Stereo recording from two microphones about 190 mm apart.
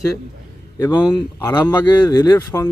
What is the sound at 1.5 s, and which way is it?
Speech, 20° left (ahead or behind).